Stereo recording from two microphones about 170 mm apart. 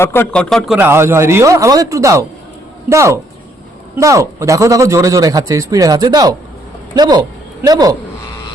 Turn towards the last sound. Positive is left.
turn(degrees=-20)  # may be behind; listen again after turning